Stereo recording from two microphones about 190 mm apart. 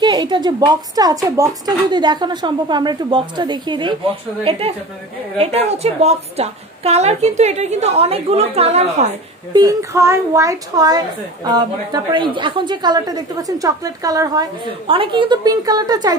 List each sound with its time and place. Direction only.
0.0 s a woman's voice: 25° right (ahead or behind)
9.5 s a woman's voice: 20° right (ahead or behind)